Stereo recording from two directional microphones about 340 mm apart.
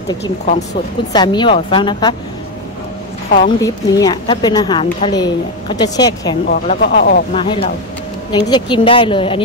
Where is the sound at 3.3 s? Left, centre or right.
Centre.